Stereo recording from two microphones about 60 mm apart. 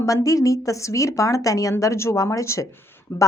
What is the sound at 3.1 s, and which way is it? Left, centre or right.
Speech, left.